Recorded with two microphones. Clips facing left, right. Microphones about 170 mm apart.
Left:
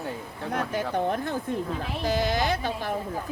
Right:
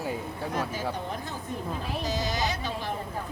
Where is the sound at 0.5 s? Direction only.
60° left (ahead or behind).